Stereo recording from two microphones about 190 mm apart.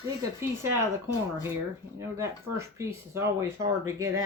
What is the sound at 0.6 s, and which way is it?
Speech, 15° right (ahead or behind).